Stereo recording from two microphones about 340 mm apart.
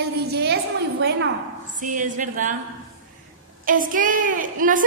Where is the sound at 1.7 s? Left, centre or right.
Right.